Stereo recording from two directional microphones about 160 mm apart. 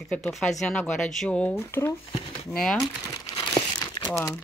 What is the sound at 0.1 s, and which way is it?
Speech, 5° left (ahead or behind).